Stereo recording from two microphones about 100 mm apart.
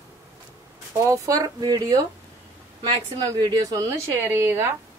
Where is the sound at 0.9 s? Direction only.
30° right (ahead or behind).